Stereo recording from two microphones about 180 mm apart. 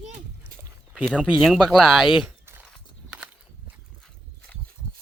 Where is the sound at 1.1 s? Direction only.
Centre (ahead or behind).